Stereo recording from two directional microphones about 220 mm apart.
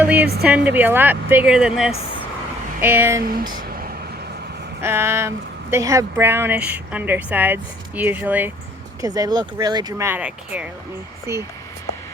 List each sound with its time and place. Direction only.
0.0 s a woman's voice: 5° right (ahead or behind)
3.6 s vehicle: 40° right (ahead or behind)
4.8 s speech: 10° right (ahead or behind)